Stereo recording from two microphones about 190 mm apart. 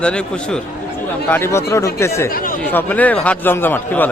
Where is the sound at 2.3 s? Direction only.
50° left (ahead or behind).